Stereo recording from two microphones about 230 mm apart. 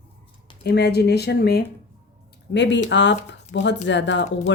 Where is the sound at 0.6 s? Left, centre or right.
Left.